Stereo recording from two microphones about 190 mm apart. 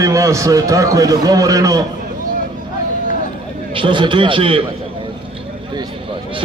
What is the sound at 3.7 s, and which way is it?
Speech, 25° right (ahead or behind).